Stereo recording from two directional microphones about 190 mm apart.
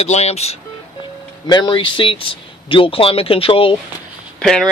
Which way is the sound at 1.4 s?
20° left (ahead or behind).